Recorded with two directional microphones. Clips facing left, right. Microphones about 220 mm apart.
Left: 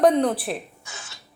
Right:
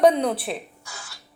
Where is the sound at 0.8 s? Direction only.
20° left (ahead or behind).